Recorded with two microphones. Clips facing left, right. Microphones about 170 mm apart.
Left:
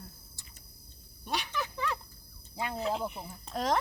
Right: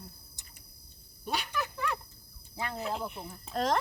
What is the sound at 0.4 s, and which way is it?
Cricket, 20° right (ahead or behind).